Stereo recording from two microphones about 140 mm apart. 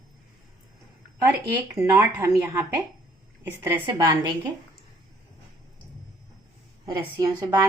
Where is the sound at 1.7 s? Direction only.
20° right (ahead or behind).